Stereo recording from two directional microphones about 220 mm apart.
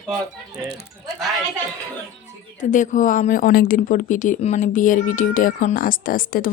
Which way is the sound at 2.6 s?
35° left (ahead or behind).